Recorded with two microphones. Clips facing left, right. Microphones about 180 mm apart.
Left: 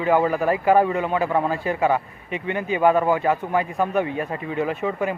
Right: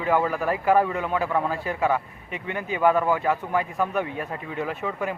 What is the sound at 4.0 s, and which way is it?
A man's voice, centre (ahead or behind).